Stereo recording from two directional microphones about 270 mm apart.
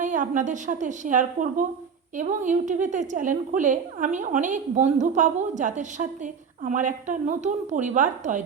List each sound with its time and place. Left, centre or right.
0.0 s a woman's voice: right